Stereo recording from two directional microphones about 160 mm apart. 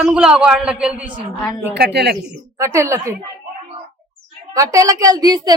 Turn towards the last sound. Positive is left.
turn(degrees=-25)  # may be behind; listen again after turning